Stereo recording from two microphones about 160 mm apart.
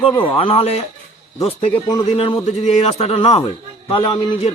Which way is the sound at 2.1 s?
40° left (ahead or behind).